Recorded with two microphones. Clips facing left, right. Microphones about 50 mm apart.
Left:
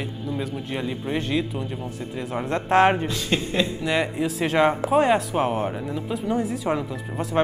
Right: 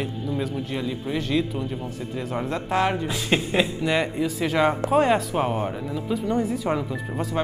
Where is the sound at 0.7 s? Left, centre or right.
Centre.